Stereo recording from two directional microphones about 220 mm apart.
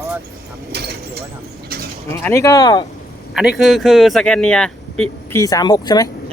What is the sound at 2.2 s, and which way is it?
Speech, 10° left (ahead or behind).